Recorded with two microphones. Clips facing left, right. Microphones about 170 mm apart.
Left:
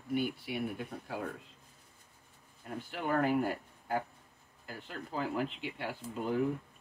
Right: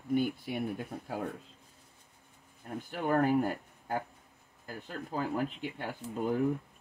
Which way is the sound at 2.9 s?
40° right (ahead or behind).